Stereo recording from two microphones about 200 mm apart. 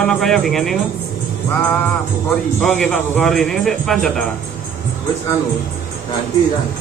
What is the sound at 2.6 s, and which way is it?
A man's voice, 5° left (ahead or behind).